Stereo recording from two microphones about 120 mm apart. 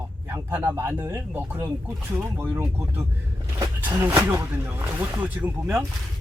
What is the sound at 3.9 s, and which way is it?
Speech, 15° right (ahead or behind).